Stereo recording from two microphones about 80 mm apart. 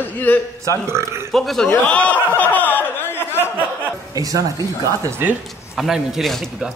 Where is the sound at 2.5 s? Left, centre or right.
Left.